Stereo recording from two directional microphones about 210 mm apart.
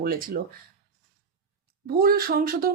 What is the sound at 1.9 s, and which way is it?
Speech, 45° right (ahead or behind).